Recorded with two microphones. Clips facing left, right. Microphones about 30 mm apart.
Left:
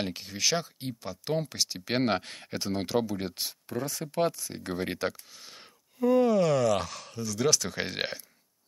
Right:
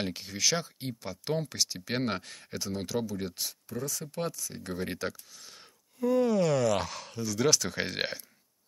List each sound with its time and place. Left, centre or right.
0.0 s speech: centre
2.0 s speech: left; by 8.2 s centre